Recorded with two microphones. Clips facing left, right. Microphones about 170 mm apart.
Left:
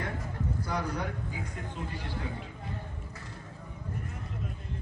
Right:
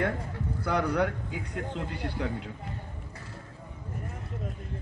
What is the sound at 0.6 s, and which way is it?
Speech, 65° right (ahead or behind).